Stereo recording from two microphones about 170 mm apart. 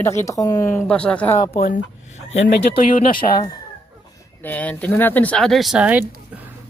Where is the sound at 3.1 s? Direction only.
25° left (ahead or behind).